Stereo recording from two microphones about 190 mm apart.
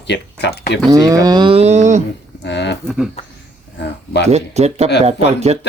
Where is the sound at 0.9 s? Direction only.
20° right (ahead or behind); by 2.0 s 40° right (ahead or behind).